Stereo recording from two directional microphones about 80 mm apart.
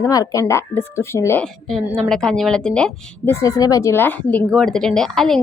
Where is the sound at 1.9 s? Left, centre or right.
Centre.